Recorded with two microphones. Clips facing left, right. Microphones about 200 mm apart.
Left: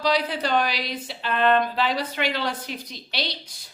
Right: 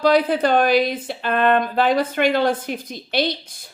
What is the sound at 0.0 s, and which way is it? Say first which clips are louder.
A woman's voice: right 8 dB; 50° right (ahead or behind).